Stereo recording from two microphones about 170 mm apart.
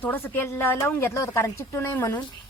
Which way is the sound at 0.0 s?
10° left (ahead or behind).